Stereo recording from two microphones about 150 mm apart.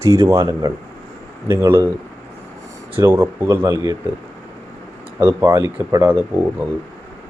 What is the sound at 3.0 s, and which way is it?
Speech, 15° right (ahead or behind).